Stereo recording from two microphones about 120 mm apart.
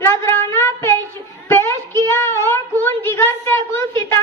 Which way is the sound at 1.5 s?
20° left (ahead or behind).